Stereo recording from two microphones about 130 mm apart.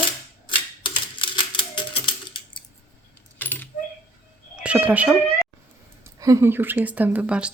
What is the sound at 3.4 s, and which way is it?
Keys jangling, 15° left (ahead or behind).